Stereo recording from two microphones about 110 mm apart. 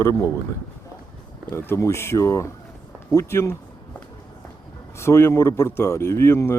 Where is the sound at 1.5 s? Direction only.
25° left (ahead or behind).